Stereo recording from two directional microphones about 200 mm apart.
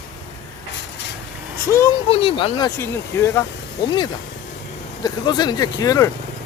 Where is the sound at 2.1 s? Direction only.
25° left (ahead or behind).